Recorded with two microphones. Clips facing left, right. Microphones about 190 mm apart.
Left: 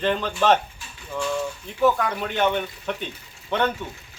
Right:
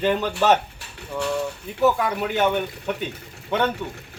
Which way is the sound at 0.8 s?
65° right (ahead or behind).